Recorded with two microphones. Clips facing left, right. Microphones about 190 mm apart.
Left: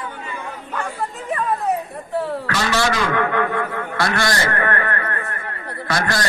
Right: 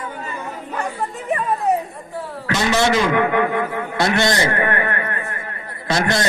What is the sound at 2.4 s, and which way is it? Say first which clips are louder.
A man's voice: right 8 dB; 20° right (ahead or behind).